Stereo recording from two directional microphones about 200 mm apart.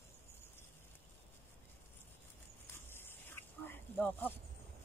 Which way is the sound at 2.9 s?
10° left (ahead or behind).